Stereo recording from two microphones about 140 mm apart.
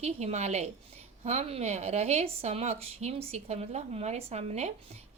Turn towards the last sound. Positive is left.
turn(degrees=-50)  # may be behind; listen again after turning